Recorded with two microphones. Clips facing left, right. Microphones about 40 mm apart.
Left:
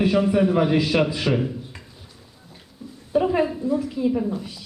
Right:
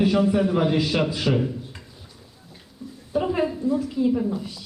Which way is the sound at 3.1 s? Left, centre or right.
Centre.